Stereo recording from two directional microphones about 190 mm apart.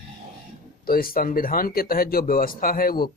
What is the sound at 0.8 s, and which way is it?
Speech, 50° left (ahead or behind).